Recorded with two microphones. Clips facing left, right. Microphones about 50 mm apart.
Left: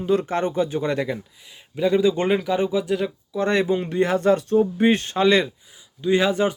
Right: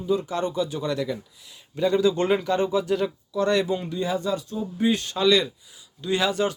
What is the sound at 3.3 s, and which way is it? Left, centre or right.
Speech, left.